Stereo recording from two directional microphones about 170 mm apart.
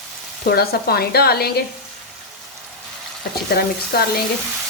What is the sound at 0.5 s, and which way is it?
Speech, 65° left (ahead or behind).